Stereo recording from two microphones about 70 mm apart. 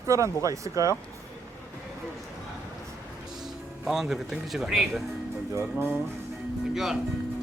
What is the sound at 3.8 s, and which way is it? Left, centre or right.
Speech, centre.